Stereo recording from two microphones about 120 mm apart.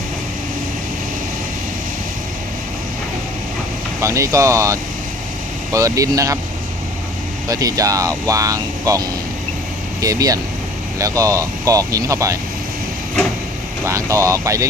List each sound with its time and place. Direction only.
4.0 s speech: 25° right (ahead or behind)
7.4 s speech: 30° right (ahead or behind)
13.8 s speech: 25° right (ahead or behind)